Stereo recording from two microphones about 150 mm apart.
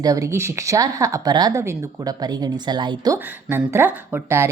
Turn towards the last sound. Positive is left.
turn(degrees=-15)  # may be behind; listen again after turning